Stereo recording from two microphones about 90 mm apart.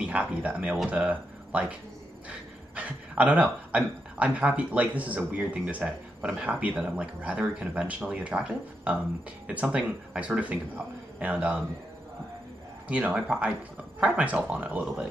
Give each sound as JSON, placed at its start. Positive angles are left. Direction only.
{"t": 0.0, "sound": "speech", "side_deg": -15}
{"t": 12.8, "sound": "speech", "side_deg": -15}